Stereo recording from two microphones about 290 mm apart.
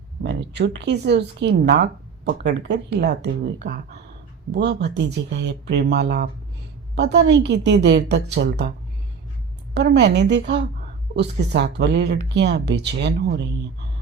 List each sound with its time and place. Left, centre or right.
0.2 s speech: right
9.7 s speech: right